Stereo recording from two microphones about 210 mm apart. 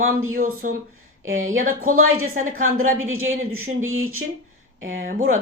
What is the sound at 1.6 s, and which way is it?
Speech, 40° right (ahead or behind).